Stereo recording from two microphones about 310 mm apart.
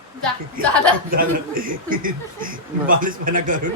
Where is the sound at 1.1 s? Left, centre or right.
Right.